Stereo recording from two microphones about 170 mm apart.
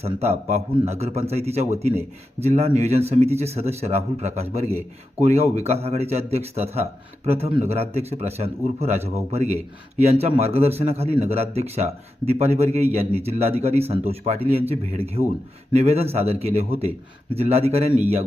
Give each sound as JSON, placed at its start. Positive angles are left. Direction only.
{"t": 0.0, "sound": "a man's voice", "side_deg": -40}